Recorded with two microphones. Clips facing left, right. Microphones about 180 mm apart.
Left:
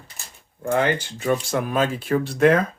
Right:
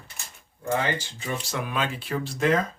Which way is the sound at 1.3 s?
40° left (ahead or behind).